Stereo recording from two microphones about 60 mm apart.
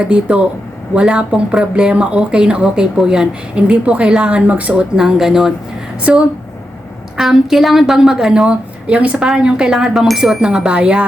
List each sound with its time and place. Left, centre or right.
0.0 s speech: centre
4.9 s a woman's voice: centre
6.1 s a woman's voice: centre
7.2 s a woman's voice: centre